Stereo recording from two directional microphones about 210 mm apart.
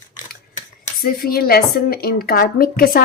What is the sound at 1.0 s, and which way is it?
A woman's voice, 45° left (ahead or behind).